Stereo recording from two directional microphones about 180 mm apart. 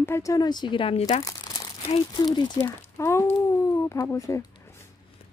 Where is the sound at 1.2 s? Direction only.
20° left (ahead or behind).